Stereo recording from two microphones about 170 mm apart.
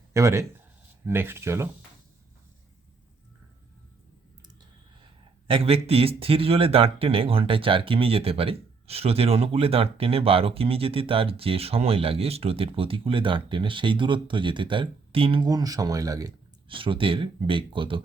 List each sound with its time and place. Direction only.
0.1 s speech: 20° right (ahead or behind)
5.5 s speech: 35° right (ahead or behind)